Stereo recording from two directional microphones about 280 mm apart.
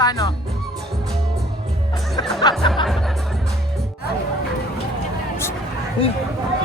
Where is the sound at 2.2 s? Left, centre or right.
Centre.